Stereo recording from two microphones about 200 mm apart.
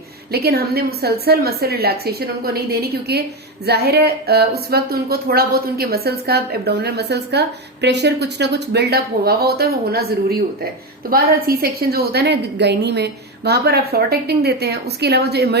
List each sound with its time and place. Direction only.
0.3 s a woman's voice: 50° right (ahead or behind)